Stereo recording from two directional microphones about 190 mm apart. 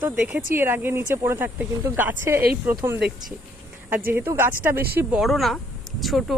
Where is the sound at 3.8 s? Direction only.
10° right (ahead or behind).